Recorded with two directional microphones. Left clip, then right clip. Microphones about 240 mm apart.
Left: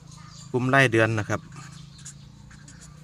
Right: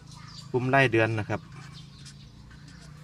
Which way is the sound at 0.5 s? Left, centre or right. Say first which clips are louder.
Left 3 dB; left.